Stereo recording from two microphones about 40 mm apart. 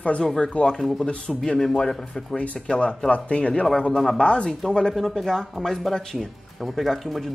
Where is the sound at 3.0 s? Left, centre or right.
Left.